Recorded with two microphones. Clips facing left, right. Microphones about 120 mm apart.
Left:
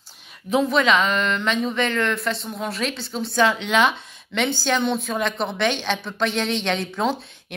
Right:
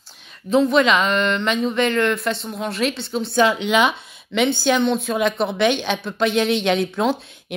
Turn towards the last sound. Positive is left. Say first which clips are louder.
# right 3 dB
turn(degrees=-5)  # may be behind; listen again after turning